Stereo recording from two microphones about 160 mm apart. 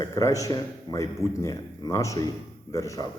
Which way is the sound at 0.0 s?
20° left (ahead or behind).